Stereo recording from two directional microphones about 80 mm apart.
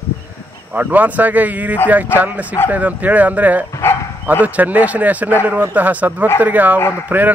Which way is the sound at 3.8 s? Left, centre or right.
Left.